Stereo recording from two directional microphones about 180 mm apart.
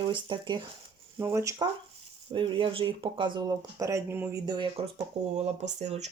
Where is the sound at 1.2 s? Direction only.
15° right (ahead or behind).